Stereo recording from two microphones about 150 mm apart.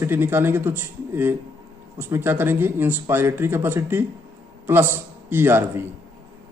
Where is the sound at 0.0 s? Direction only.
15° right (ahead or behind).